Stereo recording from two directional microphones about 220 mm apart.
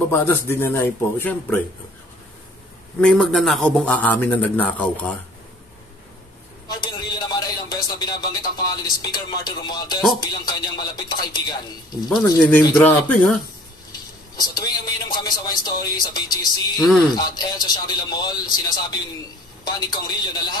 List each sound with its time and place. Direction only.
0.1 s speech: 10° left (ahead or behind)
3.0 s a man's voice: 5° left (ahead or behind)
6.7 s a sound: 20° left (ahead or behind)
9.0 s speech: 20° left (ahead or behind)
12.3 s speech: 5° left (ahead or behind)
14.4 s speech: 20° left (ahead or behind)